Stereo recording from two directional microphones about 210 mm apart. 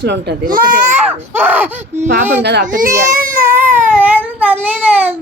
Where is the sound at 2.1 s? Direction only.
55° right (ahead or behind).